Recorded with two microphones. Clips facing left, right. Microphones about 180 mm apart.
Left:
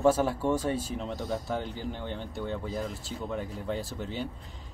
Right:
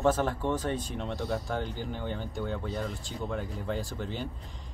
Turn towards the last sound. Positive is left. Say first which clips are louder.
# even
turn(degrees=0)  # may be behind; listen again after turning